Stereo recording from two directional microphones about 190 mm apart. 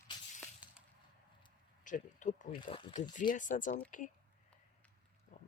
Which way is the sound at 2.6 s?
25° left (ahead or behind).